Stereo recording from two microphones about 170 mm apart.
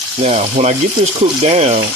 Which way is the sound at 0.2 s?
40° right (ahead or behind).